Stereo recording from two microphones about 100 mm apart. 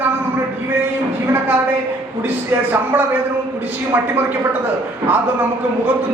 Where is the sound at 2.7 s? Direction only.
20° right (ahead or behind).